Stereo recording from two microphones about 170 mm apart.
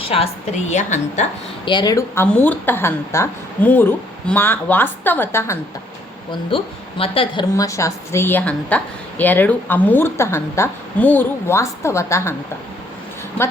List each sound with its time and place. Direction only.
0.0 s a woman's voice: 35° left (ahead or behind)
1.6 s a woman's voice: 25° left (ahead or behind)
6.5 s a woman's voice: 30° left (ahead or behind)
7.5 s a woman's voice: 20° left (ahead or behind)